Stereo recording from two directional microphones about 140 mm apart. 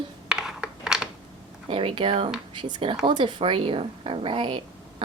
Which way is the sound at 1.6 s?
40° right (ahead or behind).